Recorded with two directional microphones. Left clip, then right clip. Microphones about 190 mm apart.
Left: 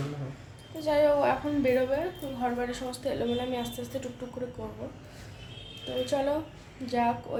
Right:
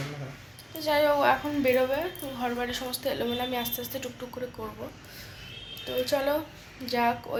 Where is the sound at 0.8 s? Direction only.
5° right (ahead or behind).